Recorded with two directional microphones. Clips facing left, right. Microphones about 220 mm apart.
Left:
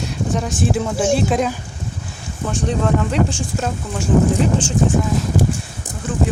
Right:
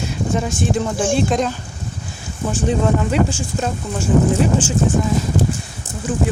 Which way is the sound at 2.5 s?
5° right (ahead or behind).